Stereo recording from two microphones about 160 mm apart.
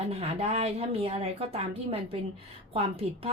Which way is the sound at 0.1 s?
40° right (ahead or behind).